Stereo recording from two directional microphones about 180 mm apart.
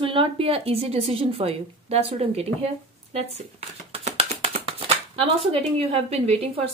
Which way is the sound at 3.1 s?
35° right (ahead or behind).